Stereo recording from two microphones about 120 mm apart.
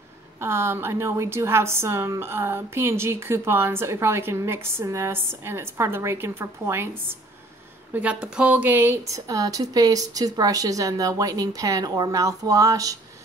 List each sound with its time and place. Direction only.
0.4 s a woman's voice: 20° right (ahead or behind)
7.9 s a woman's voice: 10° right (ahead or behind); by 12.9 s 30° right (ahead or behind)